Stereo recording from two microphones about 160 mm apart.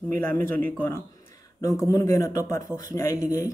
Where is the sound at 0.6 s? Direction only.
15° left (ahead or behind).